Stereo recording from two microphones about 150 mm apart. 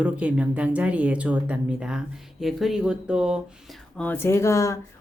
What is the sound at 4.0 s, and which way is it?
Speech, 15° left (ahead or behind).